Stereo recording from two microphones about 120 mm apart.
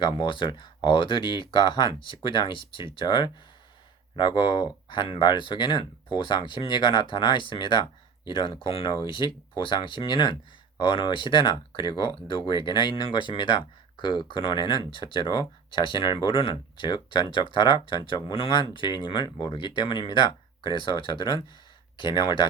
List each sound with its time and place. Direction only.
0.0 s speech: 45° left (ahead or behind)